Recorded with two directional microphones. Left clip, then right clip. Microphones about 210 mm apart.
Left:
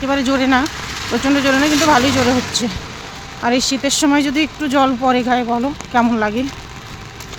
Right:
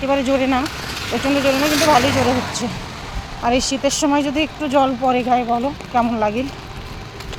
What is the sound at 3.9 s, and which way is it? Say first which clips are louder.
Speech: left 2 dB; 40° left (ahead or behind).